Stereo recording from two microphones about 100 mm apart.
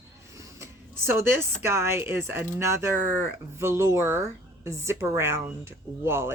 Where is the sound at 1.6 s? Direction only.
25° right (ahead or behind).